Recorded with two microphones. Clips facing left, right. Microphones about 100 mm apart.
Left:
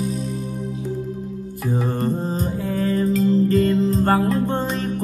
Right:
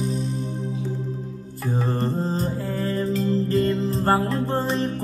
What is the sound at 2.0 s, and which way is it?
Music, 5° left (ahead or behind).